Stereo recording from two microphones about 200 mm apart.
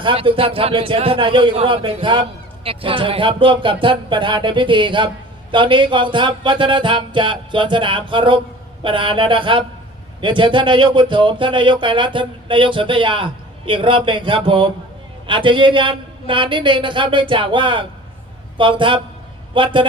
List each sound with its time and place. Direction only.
0.0 s speech: 25° right (ahead or behind)